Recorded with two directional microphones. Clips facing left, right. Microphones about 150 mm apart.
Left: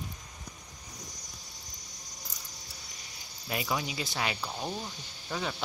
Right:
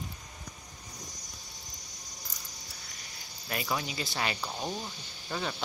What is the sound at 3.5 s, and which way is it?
Speech, 10° left (ahead or behind).